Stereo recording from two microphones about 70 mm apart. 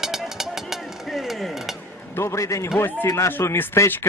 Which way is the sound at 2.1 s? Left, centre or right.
Left.